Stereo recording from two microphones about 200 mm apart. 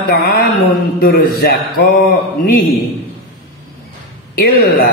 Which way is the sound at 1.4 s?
55° left (ahead or behind).